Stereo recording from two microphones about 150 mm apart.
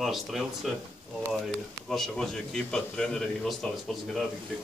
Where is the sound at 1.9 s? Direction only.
Centre (ahead or behind).